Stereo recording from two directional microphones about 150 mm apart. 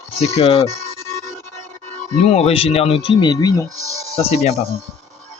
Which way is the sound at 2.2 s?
45° left (ahead or behind).